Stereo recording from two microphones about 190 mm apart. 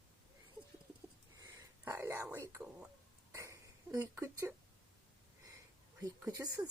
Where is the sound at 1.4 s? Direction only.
15° right (ahead or behind).